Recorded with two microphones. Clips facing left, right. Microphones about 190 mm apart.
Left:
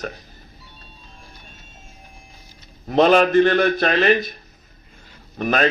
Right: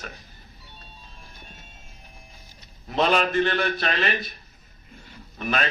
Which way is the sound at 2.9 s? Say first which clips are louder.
Left 8 dB; 45° left (ahead or behind).